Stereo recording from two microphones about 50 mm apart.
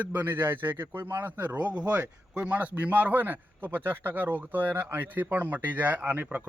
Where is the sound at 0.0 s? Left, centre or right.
Right.